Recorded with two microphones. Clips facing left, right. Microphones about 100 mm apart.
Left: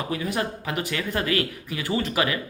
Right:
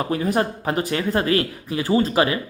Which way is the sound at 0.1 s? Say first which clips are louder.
Right 6 dB; 40° right (ahead or behind).